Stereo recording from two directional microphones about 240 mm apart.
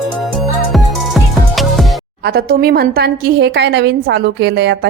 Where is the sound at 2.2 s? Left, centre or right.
Right.